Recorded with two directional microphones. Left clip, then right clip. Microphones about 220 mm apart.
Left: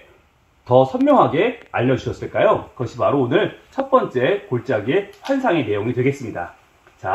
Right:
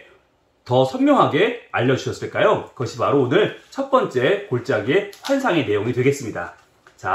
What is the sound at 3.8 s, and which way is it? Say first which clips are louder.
Speech: left 1 dB; 5° left (ahead or behind).